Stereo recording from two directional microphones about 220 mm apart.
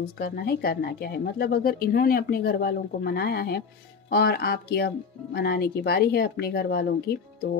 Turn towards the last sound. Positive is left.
turn(degrees=45)  # may be behind; listen again after turning